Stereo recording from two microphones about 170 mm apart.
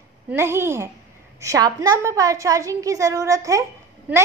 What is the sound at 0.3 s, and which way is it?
A woman's voice, 15° right (ahead or behind).